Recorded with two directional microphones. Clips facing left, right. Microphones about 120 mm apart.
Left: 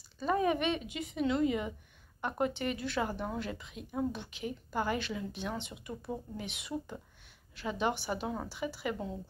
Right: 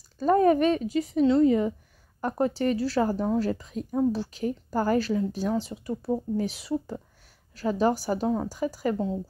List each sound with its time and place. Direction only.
0.2 s speech: 40° right (ahead or behind)